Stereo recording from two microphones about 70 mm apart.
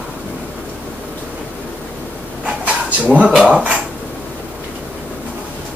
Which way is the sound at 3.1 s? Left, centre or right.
Centre.